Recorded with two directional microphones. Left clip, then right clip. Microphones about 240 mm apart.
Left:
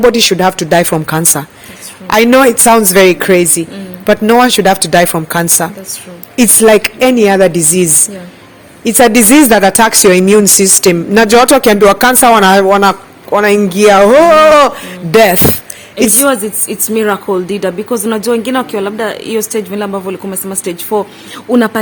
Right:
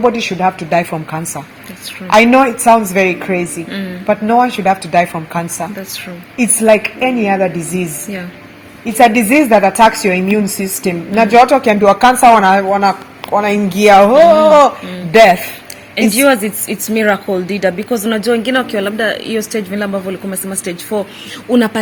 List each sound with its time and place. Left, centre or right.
0.3 s a woman's voice: left
16.1 s speech: centre